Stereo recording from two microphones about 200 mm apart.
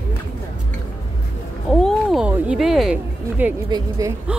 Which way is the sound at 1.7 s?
5° left (ahead or behind).